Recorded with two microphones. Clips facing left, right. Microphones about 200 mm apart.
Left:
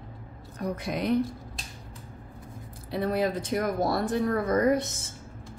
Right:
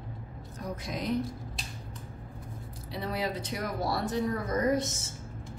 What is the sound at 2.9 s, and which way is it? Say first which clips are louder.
Speech: left 6 dB; 50° left (ahead or behind).